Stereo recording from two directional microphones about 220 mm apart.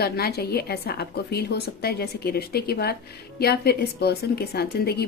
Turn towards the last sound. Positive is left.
turn(degrees=45)  # may be behind; listen again after turning